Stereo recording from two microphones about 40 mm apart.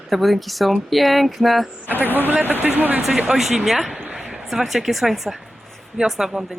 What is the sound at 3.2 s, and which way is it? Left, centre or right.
Speech, centre.